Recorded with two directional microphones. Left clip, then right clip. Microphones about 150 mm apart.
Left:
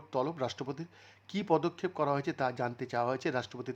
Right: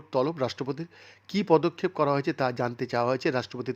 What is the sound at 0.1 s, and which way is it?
Speech, 15° right (ahead or behind).